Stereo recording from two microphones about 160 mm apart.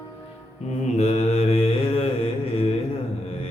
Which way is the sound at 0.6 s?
45° left (ahead or behind).